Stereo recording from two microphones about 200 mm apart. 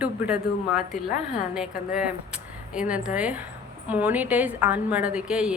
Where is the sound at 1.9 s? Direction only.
5° right (ahead or behind).